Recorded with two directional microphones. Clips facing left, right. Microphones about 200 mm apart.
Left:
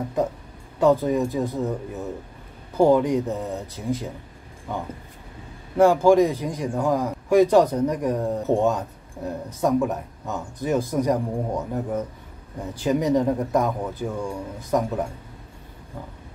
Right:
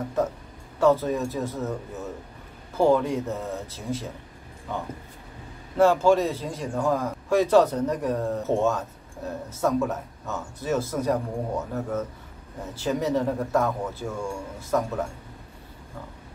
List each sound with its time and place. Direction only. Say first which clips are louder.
0.2 s a man's voice: left 1 dB; 15° left (ahead or behind)
2.8 s a man's voice: left 3 dB; 15° left (ahead or behind)
5.8 s a man's voice: left 3 dB; 15° left (ahead or behind)